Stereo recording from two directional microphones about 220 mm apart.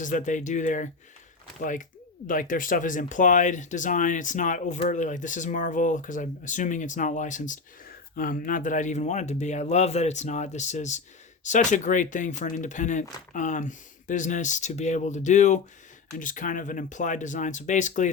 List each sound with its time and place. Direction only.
0.0 s speech: 35° left (ahead or behind)